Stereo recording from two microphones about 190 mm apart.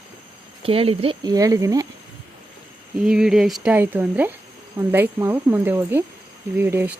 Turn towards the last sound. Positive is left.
turn(degrees=-10)  # may be behind; listen again after turning